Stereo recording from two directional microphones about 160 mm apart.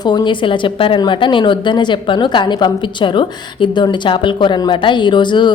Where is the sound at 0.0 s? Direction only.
25° left (ahead or behind).